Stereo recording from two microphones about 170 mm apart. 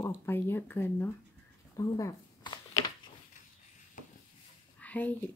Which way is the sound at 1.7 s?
20° left (ahead or behind).